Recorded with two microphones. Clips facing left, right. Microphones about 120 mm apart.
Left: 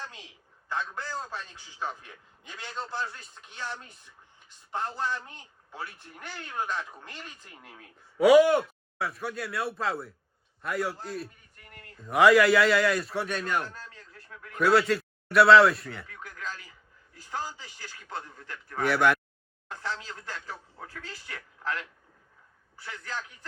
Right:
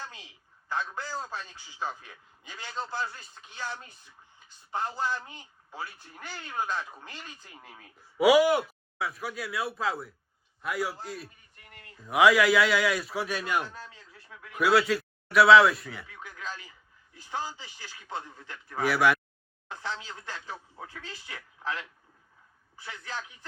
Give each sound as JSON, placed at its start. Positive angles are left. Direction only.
{"t": 0.7, "sound": "a man's voice", "side_deg": -5}
{"t": 23.1, "sound": "a man's voice", "side_deg": 0}